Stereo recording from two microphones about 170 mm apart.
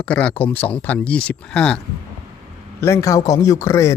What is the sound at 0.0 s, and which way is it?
Speech, 5° left (ahead or behind).